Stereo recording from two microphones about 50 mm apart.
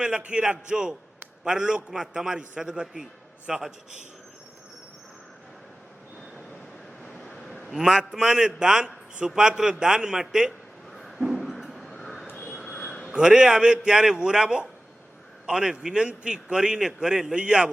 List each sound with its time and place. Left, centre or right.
0.0 s a man's voice: right; by 3.6 s centre
7.0 s vehicle: centre
7.7 s a man's voice: centre
11.2 s a sound: centre
12.0 s vehicle: centre
12.6 s a sound: left
13.1 s a man's voice: centre